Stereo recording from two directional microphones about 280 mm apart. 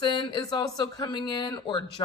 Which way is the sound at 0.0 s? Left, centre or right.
Centre.